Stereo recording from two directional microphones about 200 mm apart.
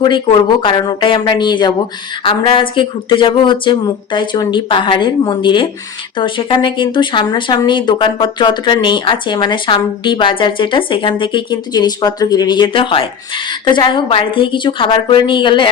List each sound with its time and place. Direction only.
0.0 s speech: 25° left (ahead or behind)